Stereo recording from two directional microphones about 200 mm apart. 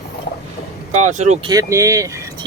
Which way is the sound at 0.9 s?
35° right (ahead or behind).